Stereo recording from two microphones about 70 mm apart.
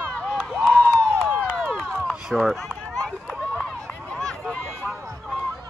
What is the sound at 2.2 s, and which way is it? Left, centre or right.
Speech, centre.